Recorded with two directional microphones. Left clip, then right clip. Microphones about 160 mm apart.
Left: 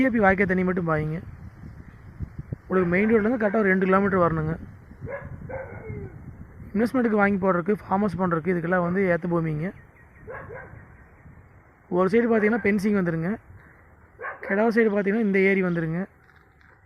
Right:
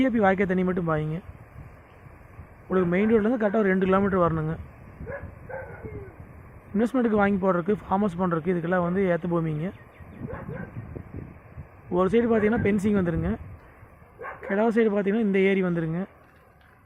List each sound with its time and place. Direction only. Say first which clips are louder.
0.0 s speech: left 2 dB; centre (ahead or behind)
2.6 s speech: left 1 dB; centre (ahead or behind)
5.1 s bow-wow: left 2 dB; 35° right (ahead or behind)
6.7 s speech: left 1 dB; centre (ahead or behind)
11.9 s speech: left 1 dB; centre (ahead or behind)
14.5 s speech: left 1 dB; centre (ahead or behind)